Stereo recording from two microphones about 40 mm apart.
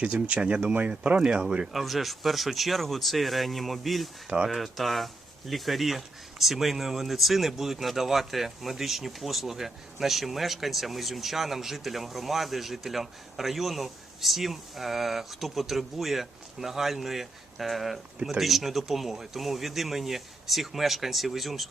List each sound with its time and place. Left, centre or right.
0.0 s speech: right
0.7 s speech: right
1.3 s speech: centre
1.7 s speech: centre